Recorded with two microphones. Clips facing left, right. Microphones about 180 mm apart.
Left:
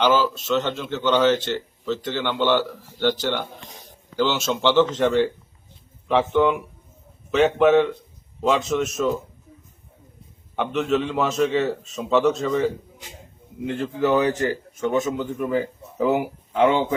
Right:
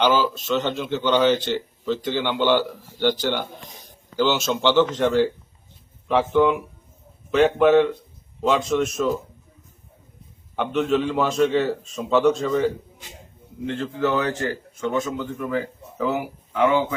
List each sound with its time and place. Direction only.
0.0 s a man's voice: centre (ahead or behind)
10.5 s a man's voice: centre (ahead or behind)
13.7 s a man's voice: 15° left (ahead or behind)